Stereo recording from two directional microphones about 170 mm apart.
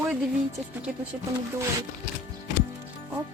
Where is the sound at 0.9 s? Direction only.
5° right (ahead or behind).